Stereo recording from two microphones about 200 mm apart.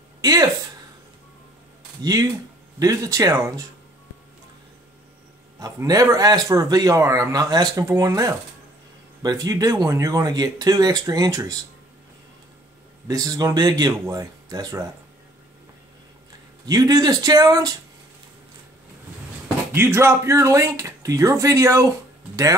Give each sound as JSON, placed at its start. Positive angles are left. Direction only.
{"t": 0.2, "sound": "speech", "side_deg": -20}
{"t": 2.8, "sound": "speech", "side_deg": -15}
{"t": 5.6, "sound": "speech", "side_deg": -15}
{"t": 13.1, "sound": "speech", "side_deg": -20}
{"t": 16.6, "sound": "speech", "side_deg": -20}
{"t": 19.7, "sound": "speech", "side_deg": -10}